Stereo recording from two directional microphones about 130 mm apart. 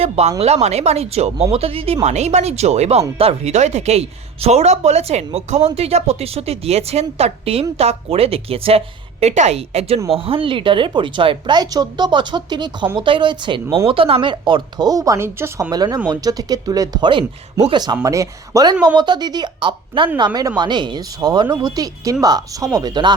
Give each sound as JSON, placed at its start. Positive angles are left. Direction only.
{"t": 0.0, "sound": "speech", "side_deg": -50}
{"t": 9.2, "sound": "speech", "side_deg": -60}
{"t": 17.9, "sound": "speech", "side_deg": -25}